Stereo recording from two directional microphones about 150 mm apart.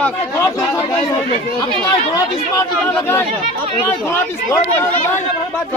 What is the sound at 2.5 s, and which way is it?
Speech, 20° left (ahead or behind).